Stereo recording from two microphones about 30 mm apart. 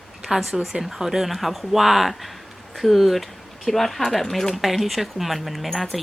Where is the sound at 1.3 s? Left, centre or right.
Centre.